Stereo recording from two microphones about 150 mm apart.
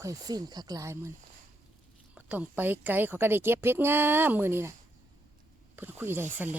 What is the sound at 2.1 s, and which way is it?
A woman's voice, 10° right (ahead or behind).